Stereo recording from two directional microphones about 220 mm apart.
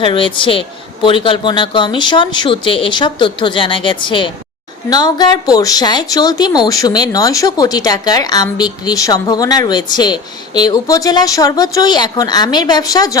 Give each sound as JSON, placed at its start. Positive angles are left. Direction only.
{"t": 0.0, "sound": "speech", "side_deg": 20}